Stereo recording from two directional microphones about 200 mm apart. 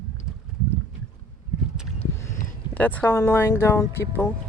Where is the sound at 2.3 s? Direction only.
40° left (ahead or behind).